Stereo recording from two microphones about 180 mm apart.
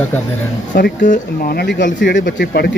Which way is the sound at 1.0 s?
50° left (ahead or behind).